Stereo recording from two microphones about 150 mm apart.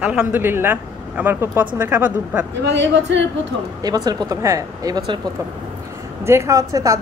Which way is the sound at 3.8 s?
25° right (ahead or behind).